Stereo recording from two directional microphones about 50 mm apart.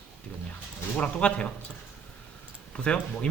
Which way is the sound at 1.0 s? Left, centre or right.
Left.